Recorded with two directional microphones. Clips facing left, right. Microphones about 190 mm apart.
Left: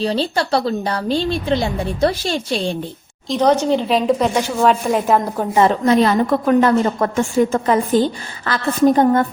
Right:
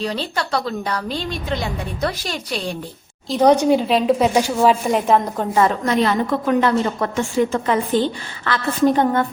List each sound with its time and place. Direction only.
0.0 s a woman's voice: 30° left (ahead or behind)
3.2 s speech: 10° right (ahead or behind)
5.5 s a woman's voice: 30° left (ahead or behind)
6.6 s a woman's voice: 45° left (ahead or behind)